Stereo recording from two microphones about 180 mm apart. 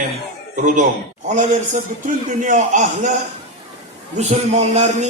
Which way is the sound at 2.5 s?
45° right (ahead or behind).